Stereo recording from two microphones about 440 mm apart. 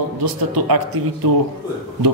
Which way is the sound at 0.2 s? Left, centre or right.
Right.